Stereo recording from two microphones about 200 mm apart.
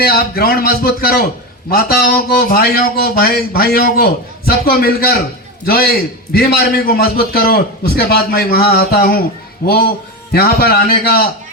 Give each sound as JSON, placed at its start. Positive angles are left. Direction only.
{"t": 0.0, "sound": "a man's voice", "side_deg": 50}